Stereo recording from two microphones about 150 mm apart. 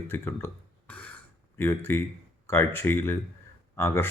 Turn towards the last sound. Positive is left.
turn(degrees=15)  # may be behind; listen again after turning